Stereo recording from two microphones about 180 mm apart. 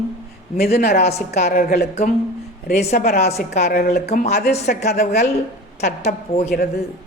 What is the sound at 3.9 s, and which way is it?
Speech, 40° left (ahead or behind).